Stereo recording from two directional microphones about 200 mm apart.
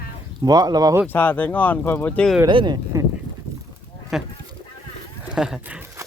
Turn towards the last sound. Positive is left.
turn(degrees=-10)  # may be behind; listen again after turning